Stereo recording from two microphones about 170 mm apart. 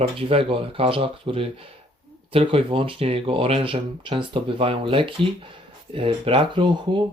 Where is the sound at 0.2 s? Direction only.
35° right (ahead or behind).